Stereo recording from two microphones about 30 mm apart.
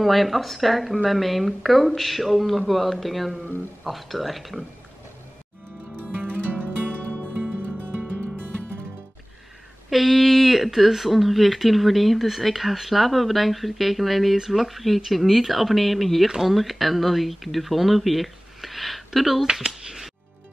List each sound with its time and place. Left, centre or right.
0.0 s speech: centre
7.3 s music: right
9.8 s speech: centre